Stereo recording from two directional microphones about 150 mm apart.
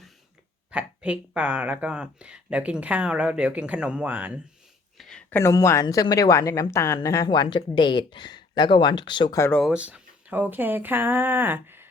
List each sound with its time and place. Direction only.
0.7 s speech: 10° right (ahead or behind)
4.9 s a sound: 5° left (ahead or behind)
5.4 s a woman's voice: 20° left (ahead or behind)
9.6 s speech: 5° right (ahead or behind)